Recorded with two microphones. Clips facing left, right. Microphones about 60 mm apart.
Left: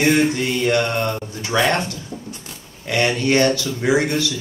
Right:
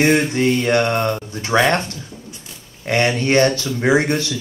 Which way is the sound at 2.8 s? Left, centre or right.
Right.